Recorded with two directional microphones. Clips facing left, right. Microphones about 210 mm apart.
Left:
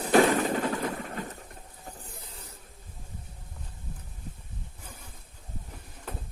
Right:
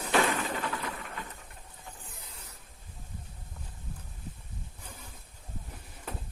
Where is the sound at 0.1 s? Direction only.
45° left (ahead or behind).